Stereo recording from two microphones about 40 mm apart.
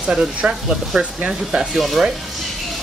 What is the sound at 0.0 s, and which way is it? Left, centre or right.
Speech, right.